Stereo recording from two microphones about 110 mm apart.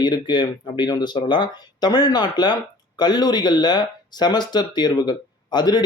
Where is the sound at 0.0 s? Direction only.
40° left (ahead or behind).